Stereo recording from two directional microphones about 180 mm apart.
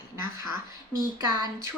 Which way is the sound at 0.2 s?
15° right (ahead or behind).